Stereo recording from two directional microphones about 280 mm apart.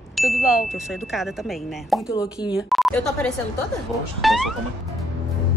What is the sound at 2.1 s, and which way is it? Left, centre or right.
Speech, centre.